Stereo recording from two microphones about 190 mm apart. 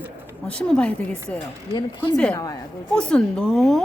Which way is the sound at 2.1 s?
5° left (ahead or behind).